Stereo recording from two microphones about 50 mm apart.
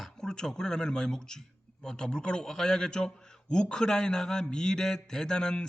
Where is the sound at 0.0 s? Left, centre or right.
Centre.